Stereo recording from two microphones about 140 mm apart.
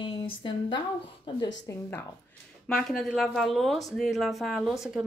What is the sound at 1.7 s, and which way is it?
Speech, 20° left (ahead or behind).